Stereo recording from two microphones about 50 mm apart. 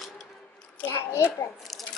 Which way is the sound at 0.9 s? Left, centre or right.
Left.